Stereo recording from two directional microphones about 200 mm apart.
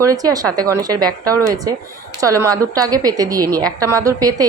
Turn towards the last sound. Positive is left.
turn(degrees=-15)  # may be behind; listen again after turning